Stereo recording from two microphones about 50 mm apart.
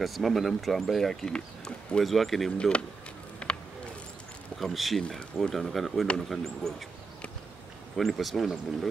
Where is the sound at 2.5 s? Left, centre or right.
Left.